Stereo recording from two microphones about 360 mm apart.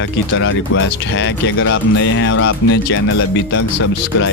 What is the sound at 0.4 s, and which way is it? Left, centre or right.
Speech, left.